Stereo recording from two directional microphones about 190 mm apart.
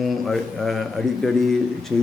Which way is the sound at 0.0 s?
Centre (ahead or behind).